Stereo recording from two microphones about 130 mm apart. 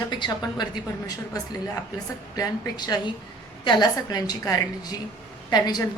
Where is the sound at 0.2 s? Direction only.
35° left (ahead or behind).